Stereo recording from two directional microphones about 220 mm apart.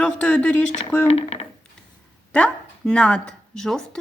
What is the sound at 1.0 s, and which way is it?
Speech, 30° left (ahead or behind).